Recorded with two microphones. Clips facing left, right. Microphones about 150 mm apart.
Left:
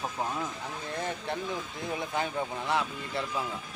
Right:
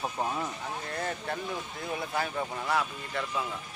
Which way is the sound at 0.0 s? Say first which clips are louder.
Right 1 dB; 10° right (ahead or behind).